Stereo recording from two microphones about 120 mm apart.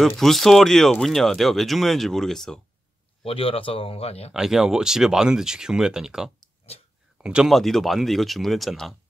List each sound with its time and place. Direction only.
0.2 s speech: centre (ahead or behind)
3.3 s a man's voice: 50° left (ahead or behind)
4.3 s speech: 5° right (ahead or behind)